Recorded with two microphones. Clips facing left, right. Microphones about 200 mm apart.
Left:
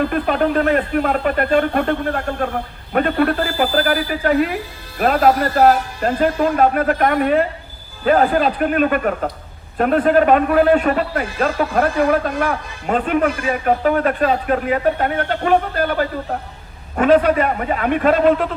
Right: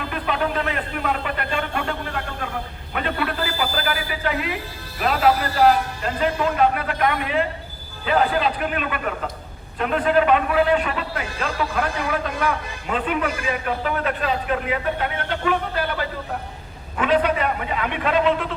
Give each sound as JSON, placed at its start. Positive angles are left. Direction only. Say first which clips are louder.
{"t": 0.0, "sound": "a man's voice", "louder": "left 7 dB", "side_deg": 45}